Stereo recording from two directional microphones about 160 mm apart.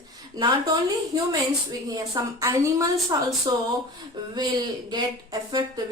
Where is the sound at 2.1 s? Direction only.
20° right (ahead or behind).